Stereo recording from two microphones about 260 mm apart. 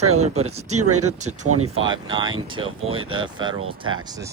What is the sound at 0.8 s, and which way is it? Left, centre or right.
Speech, right.